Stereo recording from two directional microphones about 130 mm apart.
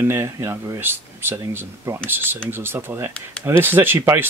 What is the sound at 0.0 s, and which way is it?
Speech, 20° right (ahead or behind).